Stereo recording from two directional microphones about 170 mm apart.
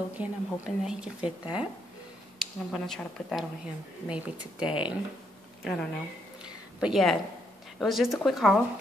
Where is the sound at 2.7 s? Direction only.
Centre (ahead or behind).